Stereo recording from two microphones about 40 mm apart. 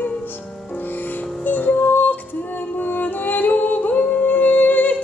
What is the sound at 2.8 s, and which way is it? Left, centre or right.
Singing, left.